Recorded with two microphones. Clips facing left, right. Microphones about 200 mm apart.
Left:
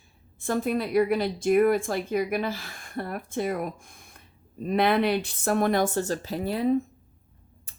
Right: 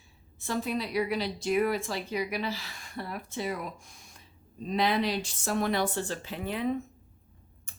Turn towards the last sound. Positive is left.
turn(degrees=35)  # may be behind; listen again after turning